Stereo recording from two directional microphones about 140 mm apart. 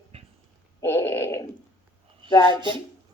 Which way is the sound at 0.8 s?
20° left (ahead or behind).